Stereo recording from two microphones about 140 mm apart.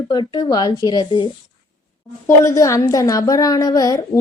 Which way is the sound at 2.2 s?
20° left (ahead or behind).